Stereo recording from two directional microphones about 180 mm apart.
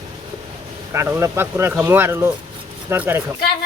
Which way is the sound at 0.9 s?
15° right (ahead or behind).